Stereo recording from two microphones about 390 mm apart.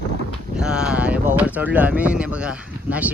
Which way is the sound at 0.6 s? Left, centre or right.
Centre.